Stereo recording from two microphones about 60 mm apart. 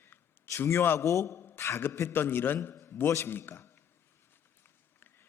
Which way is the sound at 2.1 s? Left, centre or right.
Left.